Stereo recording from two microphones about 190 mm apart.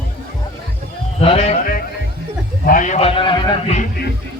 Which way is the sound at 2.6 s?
45° left (ahead or behind).